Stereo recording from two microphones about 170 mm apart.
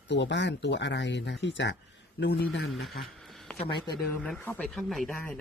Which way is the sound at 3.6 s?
30° left (ahead or behind).